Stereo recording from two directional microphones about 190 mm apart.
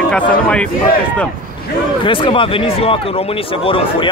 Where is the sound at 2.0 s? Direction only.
25° left (ahead or behind).